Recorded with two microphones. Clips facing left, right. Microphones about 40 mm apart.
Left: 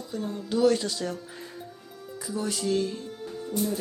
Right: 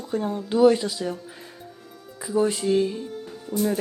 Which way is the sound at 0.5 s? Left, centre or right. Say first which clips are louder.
Right 5 dB; centre.